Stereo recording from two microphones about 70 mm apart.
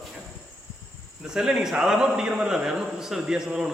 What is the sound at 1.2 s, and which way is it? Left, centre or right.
A man's voice, centre.